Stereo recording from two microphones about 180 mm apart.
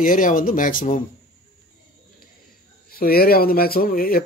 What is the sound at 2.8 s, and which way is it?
Speech, 55° left (ahead or behind).